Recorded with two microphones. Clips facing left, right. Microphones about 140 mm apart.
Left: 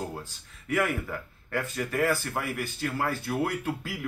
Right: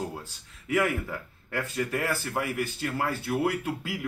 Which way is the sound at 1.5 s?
5° right (ahead or behind).